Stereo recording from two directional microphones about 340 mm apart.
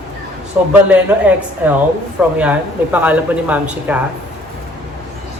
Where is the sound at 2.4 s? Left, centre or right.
Centre.